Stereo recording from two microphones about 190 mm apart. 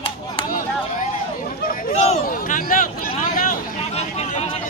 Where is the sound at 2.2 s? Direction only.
45° left (ahead or behind).